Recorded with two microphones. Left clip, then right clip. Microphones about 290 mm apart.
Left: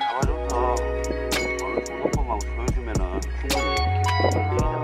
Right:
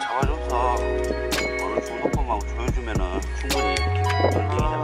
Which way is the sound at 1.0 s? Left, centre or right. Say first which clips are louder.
Right 1 dB; centre.